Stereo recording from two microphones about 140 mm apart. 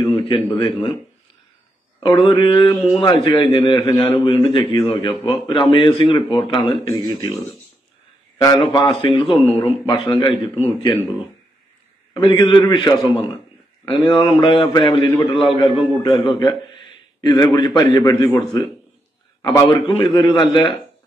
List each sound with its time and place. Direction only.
0.1 s a man's voice: 35° left (ahead or behind)
2.0 s a man's voice: 35° left (ahead or behind)
6.9 s a man's voice: 20° left (ahead or behind); by 10.9 s 40° left (ahead or behind)
12.1 s a man's voice: 30° left (ahead or behind)